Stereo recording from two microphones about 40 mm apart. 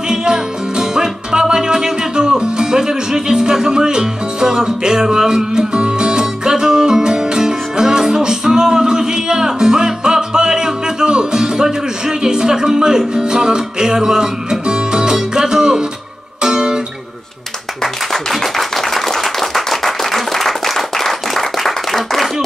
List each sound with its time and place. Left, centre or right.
0.1 s music: centre
18.1 s clapping: centre